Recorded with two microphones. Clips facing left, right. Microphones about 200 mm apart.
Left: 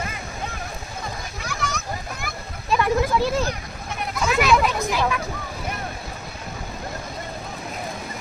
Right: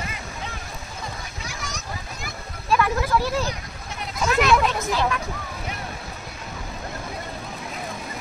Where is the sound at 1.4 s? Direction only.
60° left (ahead or behind).